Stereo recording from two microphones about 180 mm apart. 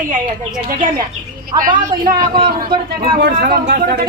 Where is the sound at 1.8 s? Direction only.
50° right (ahead or behind).